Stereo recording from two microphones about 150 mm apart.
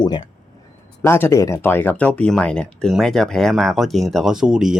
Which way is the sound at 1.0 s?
15° left (ahead or behind).